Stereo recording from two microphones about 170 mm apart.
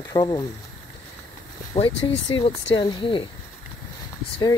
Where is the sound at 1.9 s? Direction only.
90° left.